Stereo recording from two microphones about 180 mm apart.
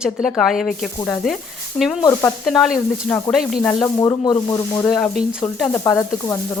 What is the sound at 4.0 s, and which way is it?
Speech, 20° left (ahead or behind).